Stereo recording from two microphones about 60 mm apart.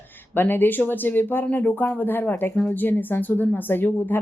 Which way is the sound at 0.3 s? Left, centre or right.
Left.